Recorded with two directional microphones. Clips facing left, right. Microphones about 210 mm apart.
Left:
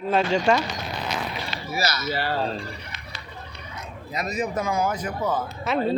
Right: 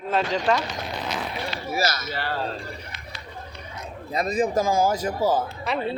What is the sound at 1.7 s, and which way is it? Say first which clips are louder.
Speech: right 1 dB; 50° right (ahead or behind).